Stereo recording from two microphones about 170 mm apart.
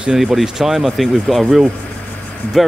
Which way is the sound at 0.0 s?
5° right (ahead or behind).